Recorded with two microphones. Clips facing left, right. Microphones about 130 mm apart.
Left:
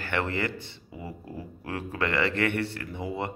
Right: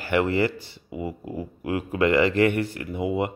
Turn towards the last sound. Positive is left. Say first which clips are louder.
# right 7 dB
turn(degrees=-15)  # may be behind; listen again after turning